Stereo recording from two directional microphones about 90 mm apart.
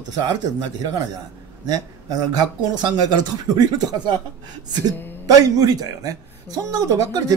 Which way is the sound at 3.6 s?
45° right (ahead or behind).